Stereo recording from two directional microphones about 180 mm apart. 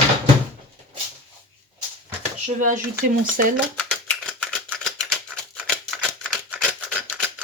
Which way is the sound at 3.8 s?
5° left (ahead or behind).